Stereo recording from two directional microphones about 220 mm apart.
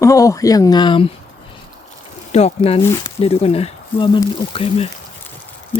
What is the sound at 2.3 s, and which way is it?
Speech, 30° left (ahead or behind).